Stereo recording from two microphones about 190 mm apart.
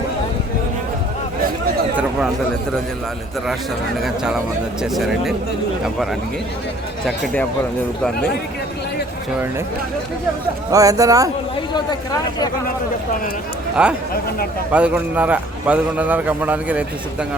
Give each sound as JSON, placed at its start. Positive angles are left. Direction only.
{"t": 2.0, "sound": "chatter", "side_deg": -5}
{"t": 4.0, "sound": "a man's voice", "side_deg": 0}
{"t": 10.7, "sound": "a man's voice", "side_deg": -20}
{"t": 13.8, "sound": "a man's voice", "side_deg": -5}